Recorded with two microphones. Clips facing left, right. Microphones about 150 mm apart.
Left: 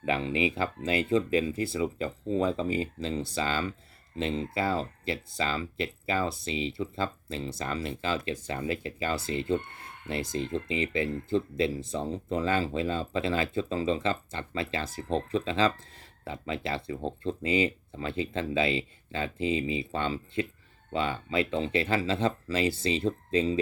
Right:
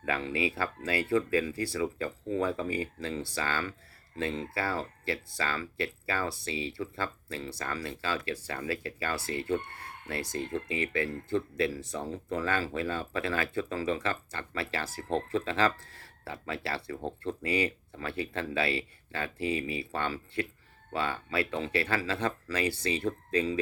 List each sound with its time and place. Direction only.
0.0 s speech: 20° left (ahead or behind)